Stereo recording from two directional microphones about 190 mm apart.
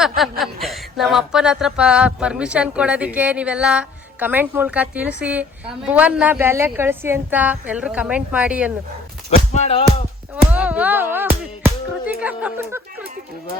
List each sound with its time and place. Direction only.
0.0 s speech: centre (ahead or behind)
9.5 s music: 35° left (ahead or behind)
10.5 s speech: 5° right (ahead or behind)